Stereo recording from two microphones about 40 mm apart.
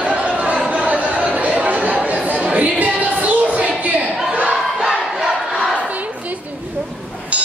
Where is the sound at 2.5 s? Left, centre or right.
Right.